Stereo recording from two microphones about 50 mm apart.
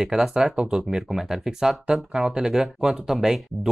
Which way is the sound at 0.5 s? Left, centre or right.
Centre.